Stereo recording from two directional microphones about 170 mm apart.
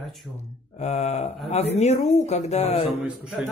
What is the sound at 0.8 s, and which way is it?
Speech, 40° left (ahead or behind).